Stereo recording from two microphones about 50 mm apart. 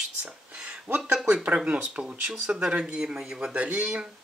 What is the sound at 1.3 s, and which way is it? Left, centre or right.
Speech, right.